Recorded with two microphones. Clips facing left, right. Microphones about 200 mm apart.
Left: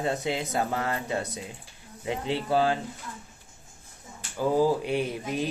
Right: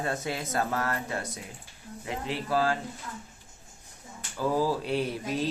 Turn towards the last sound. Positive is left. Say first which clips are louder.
# even
turn(degrees=15)  # may be behind; listen again after turning